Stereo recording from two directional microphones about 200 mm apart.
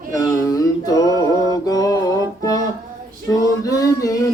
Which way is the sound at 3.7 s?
15° left (ahead or behind).